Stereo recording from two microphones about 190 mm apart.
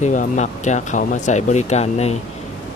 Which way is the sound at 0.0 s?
40° left (ahead or behind).